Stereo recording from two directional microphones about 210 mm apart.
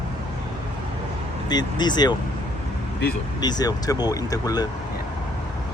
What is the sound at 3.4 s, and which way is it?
Speech, 20° left (ahead or behind).